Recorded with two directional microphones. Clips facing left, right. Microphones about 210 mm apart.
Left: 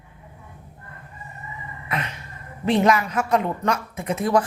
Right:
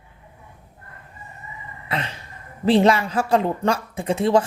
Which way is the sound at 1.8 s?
30° right (ahead or behind).